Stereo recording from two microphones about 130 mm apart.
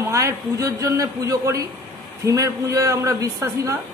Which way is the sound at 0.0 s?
20° right (ahead or behind).